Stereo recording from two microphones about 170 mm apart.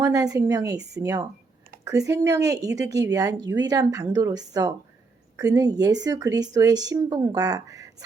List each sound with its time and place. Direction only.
0.0 s a woman's voice: 20° right (ahead or behind)